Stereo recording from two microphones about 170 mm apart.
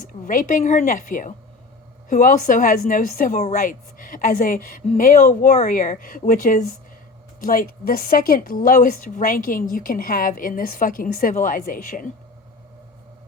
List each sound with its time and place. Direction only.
0.1 s a woman's voice: 55° left (ahead or behind)